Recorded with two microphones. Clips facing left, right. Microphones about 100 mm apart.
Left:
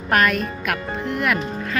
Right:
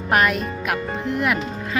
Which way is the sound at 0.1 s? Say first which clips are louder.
Even; 20° right (ahead or behind).